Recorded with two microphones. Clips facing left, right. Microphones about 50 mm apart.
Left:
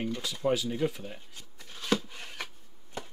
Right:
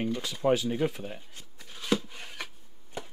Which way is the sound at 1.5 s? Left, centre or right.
Centre.